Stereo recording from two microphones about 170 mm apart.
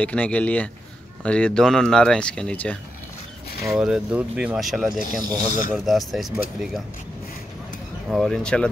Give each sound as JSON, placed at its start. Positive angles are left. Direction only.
{"t": 0.0, "sound": "speech", "side_deg": 5}
{"t": 3.7, "sound": "speech", "side_deg": -5}
{"t": 5.1, "sound": "speech", "side_deg": -55}
{"t": 5.9, "sound": "speech", "side_deg": 0}
{"t": 8.1, "sound": "speech", "side_deg": 0}